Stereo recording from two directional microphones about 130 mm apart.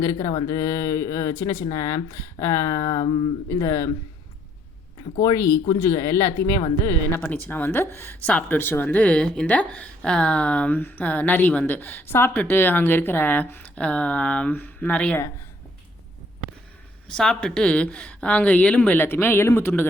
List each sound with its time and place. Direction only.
0.0 s speech: 25° left (ahead or behind)
5.2 s speech: 25° left (ahead or behind)
7.2 s speech: 15° left (ahead or behind)
17.1 s speech: 5° left (ahead or behind)